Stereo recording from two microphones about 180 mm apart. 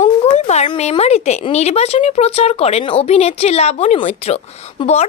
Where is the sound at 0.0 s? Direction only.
40° left (ahead or behind).